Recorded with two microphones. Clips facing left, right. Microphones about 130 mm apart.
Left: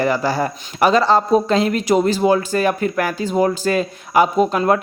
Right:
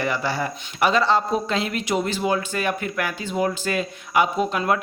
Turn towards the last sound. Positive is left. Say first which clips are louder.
# left 6 dB
turn(degrees=40)  # may be behind; listen again after turning